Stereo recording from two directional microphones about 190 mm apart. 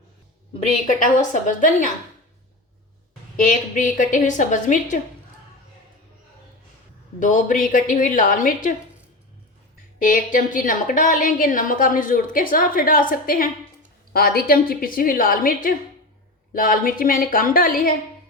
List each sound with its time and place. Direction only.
0.9 s a woman's voice: 40° left (ahead or behind)
3.3 s a woman's voice: 45° left (ahead or behind)
7.2 s a woman's voice: 40° left (ahead or behind)
10.0 s a woman's voice: 45° left (ahead or behind)